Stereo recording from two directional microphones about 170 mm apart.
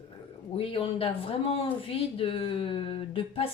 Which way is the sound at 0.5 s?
35° left (ahead or behind).